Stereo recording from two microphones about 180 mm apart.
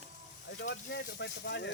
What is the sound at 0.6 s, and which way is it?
Speech, 70° left (ahead or behind).